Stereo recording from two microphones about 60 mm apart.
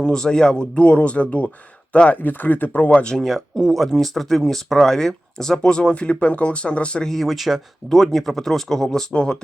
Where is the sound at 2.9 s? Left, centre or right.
Centre.